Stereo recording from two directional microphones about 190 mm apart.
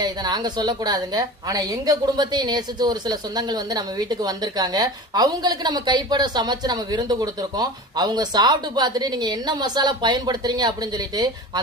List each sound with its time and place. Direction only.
0.0 s a woman's voice: 20° right (ahead or behind)